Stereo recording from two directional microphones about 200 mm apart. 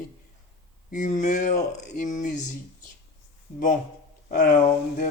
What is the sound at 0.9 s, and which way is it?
Speech, 40° left (ahead or behind).